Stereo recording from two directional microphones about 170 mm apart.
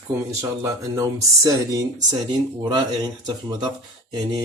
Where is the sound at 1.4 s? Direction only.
20° right (ahead or behind).